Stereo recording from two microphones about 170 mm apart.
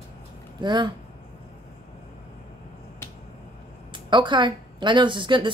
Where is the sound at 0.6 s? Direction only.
25° right (ahead or behind).